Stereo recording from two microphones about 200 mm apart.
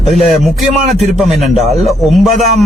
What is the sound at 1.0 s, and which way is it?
Speech, centre (ahead or behind).